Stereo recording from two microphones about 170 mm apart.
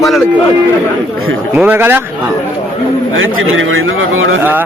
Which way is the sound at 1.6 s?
10° right (ahead or behind).